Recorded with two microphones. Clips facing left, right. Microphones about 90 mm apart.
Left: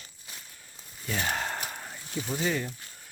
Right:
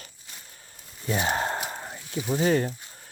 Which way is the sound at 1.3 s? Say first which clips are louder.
Right 5 dB; 30° right (ahead or behind).